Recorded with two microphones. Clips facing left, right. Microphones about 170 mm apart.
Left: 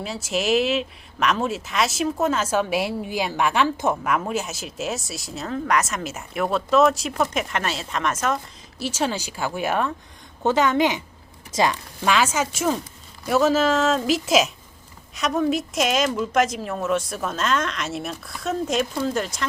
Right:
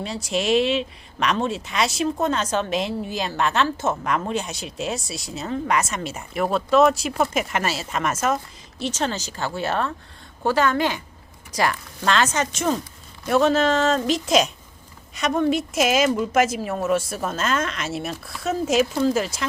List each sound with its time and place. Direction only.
0.0 s speech: centre (ahead or behind)
8.8 s speech: 10° left (ahead or behind)
12.0 s speech: 10° left (ahead or behind)